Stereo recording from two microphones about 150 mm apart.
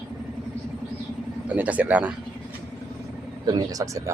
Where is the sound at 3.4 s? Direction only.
25° right (ahead or behind).